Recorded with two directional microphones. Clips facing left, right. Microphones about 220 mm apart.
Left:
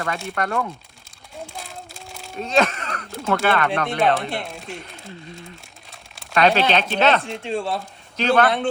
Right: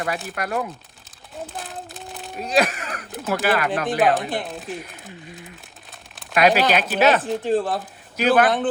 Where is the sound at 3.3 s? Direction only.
15° right (ahead or behind).